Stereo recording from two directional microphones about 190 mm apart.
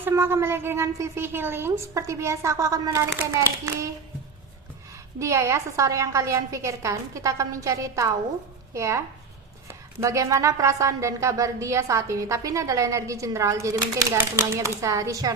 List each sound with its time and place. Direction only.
0.0 s a woman's voice: 15° right (ahead or behind)
5.2 s a woman's voice: 15° right (ahead or behind)